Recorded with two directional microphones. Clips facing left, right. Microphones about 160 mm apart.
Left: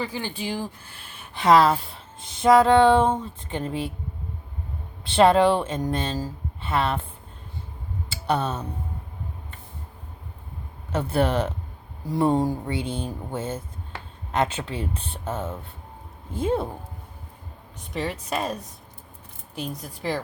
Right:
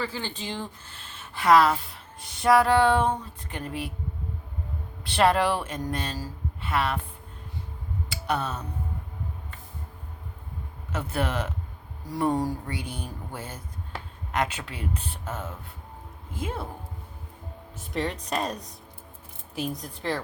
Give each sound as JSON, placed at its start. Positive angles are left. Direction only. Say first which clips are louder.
{"t": 0.0, "sound": "speech", "louder": "left 3 dB", "side_deg": 15}
{"t": 5.0, "sound": "speech", "louder": "left 5 dB", "side_deg": 25}
{"t": 8.1, "sound": "speech", "louder": "left 4 dB", "side_deg": 25}
{"t": 10.9, "sound": "speech", "louder": "left 6 dB", "side_deg": 30}
{"t": 17.9, "sound": "a woman's voice", "louder": "left 1 dB", "side_deg": 5}